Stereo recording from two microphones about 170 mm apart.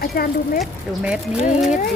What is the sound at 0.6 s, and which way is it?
Speech, 5° right (ahead or behind).